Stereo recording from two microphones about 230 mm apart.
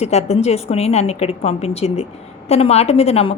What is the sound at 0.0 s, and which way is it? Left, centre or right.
A woman's voice, left.